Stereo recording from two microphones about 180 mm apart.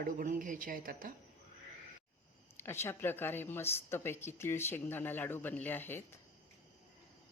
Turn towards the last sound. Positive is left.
turn(degrees=10)  # may be behind; listen again after turning